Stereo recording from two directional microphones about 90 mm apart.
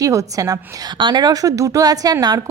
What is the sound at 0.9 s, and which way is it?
A woman's voice, 55° right (ahead or behind).